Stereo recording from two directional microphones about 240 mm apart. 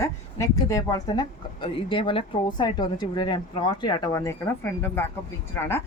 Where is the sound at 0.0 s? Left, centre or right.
Centre.